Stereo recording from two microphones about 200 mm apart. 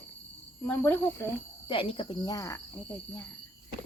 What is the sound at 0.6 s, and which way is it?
Speech, 10° left (ahead or behind).